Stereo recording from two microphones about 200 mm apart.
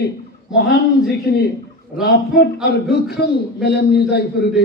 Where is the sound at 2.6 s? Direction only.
55° left (ahead or behind).